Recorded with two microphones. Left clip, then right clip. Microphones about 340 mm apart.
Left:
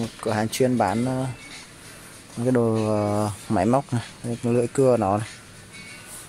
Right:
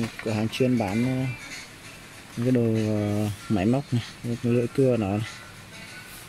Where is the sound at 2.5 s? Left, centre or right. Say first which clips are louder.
Left 3 dB; left.